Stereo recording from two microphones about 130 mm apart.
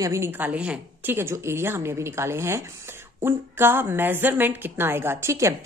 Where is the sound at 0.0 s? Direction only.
20° right (ahead or behind).